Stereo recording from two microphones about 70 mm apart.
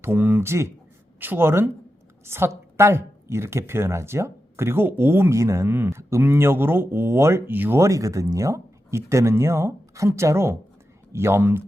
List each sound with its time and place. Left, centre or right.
0.0 s speech: right
7.8 s speech: right